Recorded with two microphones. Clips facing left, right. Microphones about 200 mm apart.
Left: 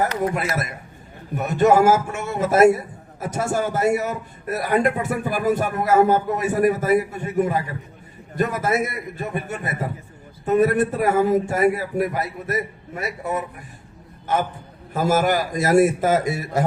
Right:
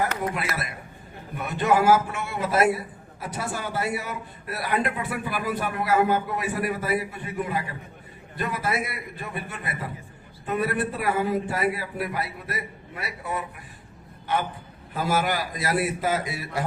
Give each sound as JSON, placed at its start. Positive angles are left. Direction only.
{"t": 0.3, "sound": "a man's voice", "side_deg": 45}